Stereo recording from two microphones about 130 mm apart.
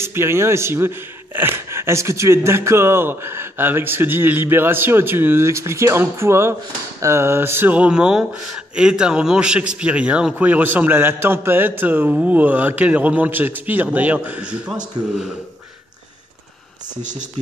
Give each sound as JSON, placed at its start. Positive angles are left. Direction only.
{"t": 0.0, "sound": "a man's voice", "side_deg": -20}
{"t": 17.0, "sound": "speech", "side_deg": -75}